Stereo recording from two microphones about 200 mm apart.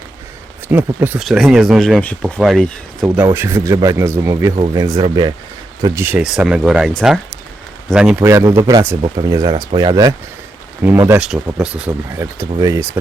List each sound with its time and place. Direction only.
0.7 s speech: 10° right (ahead or behind)
3.2 s speech: 10° right (ahead or behind)
5.8 s speech: 15° right (ahead or behind)